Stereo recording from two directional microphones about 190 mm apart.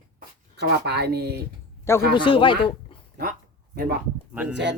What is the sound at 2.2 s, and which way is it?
Speech, 25° left (ahead or behind).